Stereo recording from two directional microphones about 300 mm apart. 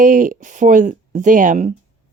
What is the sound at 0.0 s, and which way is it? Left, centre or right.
Speech, right.